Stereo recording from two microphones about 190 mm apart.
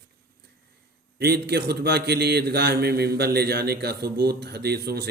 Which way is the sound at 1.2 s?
60° right (ahead or behind).